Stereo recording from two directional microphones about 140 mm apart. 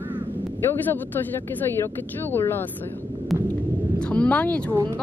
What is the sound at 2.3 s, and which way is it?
Speech, 15° left (ahead or behind).